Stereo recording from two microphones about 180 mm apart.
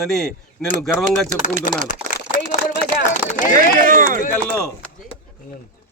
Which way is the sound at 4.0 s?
50° right (ahead or behind).